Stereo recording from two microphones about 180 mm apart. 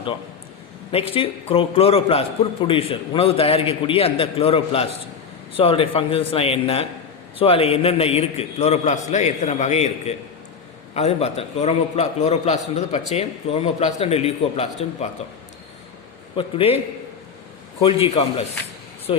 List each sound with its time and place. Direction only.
0.9 s a man's voice: 30° left (ahead or behind)
16.3 s a man's voice: 30° left (ahead or behind)